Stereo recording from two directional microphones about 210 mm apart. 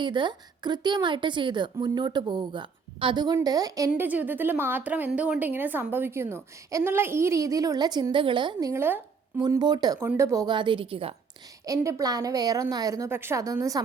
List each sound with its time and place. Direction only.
0.0 s a woman's voice: 20° right (ahead or behind)
11.6 s a woman's voice: 15° right (ahead or behind)